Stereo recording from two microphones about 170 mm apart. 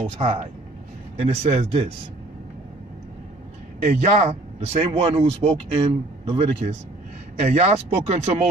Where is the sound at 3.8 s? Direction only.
40° right (ahead or behind).